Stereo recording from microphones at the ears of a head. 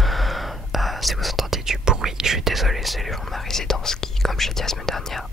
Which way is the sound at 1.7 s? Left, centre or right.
Right.